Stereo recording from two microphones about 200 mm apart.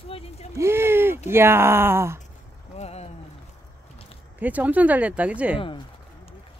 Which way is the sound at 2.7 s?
30° left (ahead or behind).